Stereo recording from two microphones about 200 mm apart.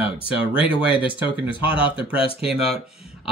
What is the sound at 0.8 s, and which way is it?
Speech, 5° right (ahead or behind).